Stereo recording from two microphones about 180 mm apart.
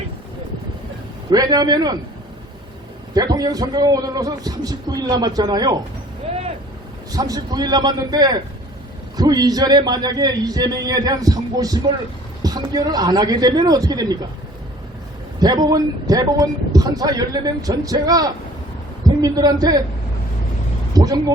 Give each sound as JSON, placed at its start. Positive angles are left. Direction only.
{"t": 1.3, "sound": "a man's voice", "side_deg": -20}
{"t": 3.3, "sound": "a man's voice", "side_deg": -20}
{"t": 7.1, "sound": "a man's voice", "side_deg": -20}
{"t": 15.4, "sound": "a man's voice", "side_deg": -20}
{"t": 20.9, "sound": "speech", "side_deg": -20}